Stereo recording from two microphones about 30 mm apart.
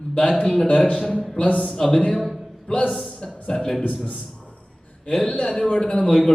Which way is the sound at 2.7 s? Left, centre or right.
Left.